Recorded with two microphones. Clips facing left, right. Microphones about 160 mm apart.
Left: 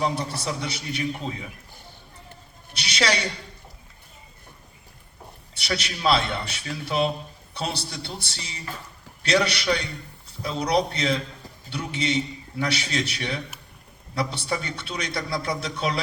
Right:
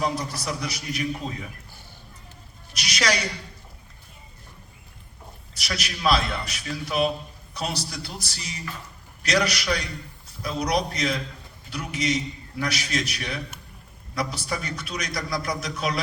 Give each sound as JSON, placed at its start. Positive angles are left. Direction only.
{"t": 0.0, "sound": "a man's voice", "side_deg": 30}
{"t": 2.7, "sound": "a man's voice", "side_deg": 30}
{"t": 5.5, "sound": "a man's voice", "side_deg": 30}